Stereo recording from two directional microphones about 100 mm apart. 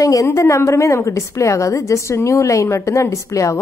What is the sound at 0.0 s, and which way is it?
A woman's voice, 35° left (ahead or behind).